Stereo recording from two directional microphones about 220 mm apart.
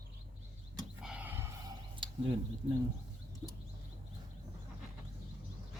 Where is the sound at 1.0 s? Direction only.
5° right (ahead or behind).